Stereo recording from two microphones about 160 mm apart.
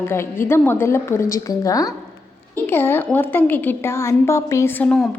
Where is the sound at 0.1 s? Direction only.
15° left (ahead or behind).